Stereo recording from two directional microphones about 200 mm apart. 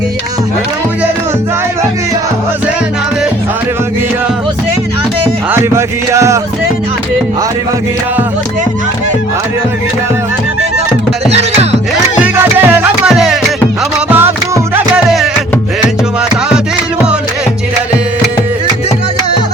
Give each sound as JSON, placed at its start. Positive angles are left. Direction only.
{"t": 5.5, "sound": "music", "side_deg": -15}
{"t": 11.3, "sound": "music", "side_deg": -30}
{"t": 12.1, "sound": "music", "side_deg": -10}